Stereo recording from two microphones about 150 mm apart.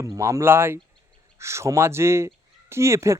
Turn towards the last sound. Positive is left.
turn(degrees=-20)  # may be behind; listen again after turning